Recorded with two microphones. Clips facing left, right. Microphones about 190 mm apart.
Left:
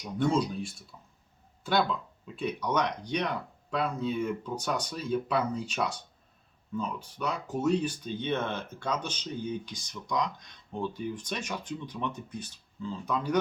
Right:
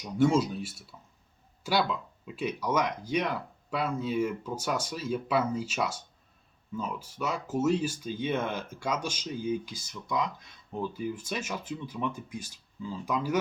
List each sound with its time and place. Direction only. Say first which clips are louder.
0.0 s speech: right 3 dB; 5° right (ahead or behind)